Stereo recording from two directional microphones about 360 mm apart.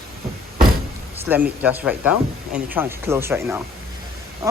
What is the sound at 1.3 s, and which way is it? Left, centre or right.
Speech, centre.